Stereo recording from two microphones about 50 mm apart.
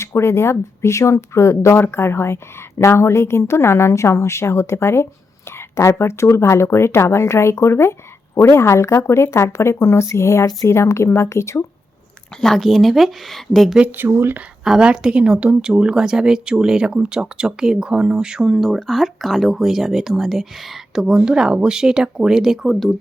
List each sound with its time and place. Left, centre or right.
0.0 s speech: left
1.7 s a woman's voice: left
12.4 s speech: centre
13.9 s speech: right
14.6 s a woman's voice: centre
15.1 s speech: right
18.6 s speech: centre